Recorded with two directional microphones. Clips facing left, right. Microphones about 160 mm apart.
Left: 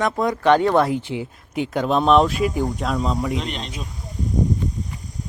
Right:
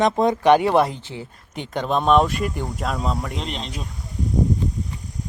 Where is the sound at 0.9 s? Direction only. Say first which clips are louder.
Left 9 dB; 15° left (ahead or behind).